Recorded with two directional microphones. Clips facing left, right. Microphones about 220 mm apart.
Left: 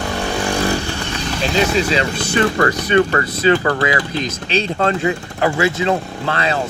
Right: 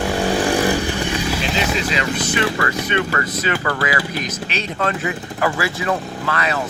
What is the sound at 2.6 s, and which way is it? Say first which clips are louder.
Speech: left 6 dB; 35° left (ahead or behind).